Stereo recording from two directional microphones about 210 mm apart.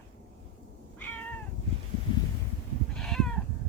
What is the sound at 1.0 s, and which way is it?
Cat, 10° left (ahead or behind).